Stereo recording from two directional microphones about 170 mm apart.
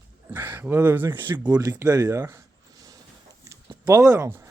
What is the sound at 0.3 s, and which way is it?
Speech, 10° right (ahead or behind).